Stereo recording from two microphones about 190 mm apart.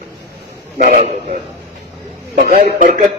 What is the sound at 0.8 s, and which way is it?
Speech, 40° right (ahead or behind).